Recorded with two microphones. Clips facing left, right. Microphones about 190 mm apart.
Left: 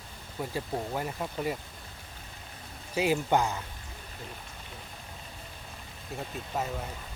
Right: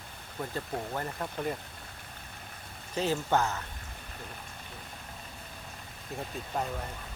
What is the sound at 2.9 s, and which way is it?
Speech, 10° left (ahead or behind).